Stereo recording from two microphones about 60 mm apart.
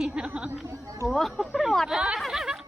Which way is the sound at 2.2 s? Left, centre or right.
Centre.